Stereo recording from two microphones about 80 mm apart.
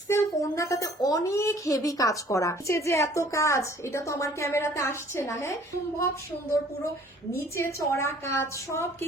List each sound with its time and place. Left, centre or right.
0.1 s speech: left
7.3 s speech: left